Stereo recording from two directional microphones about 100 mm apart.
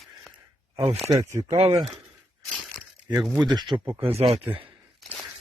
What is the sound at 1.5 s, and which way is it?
Speech, 85° right.